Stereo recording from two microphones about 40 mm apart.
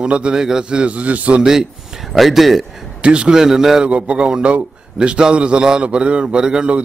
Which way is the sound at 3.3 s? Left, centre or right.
Centre.